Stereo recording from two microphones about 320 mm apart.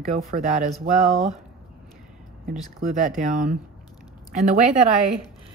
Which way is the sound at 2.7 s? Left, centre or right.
Right.